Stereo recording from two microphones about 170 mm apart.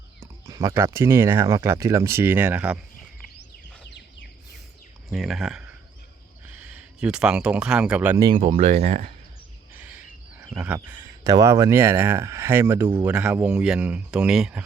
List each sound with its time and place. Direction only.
0.2 s speech: 20° right (ahead or behind)
3.8 s bird: 90° left
5.0 s speech: centre (ahead or behind)
8.1 s speech: 25° right (ahead or behind)
8.4 s speech: 40° right (ahead or behind)
9.7 s bird: 10° right (ahead or behind)
10.5 s a sound: 10° right (ahead or behind)
11.0 s speech: 20° right (ahead or behind); by 14.6 s 5° right (ahead or behind)